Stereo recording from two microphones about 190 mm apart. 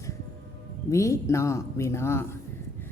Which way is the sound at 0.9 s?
15° left (ahead or behind).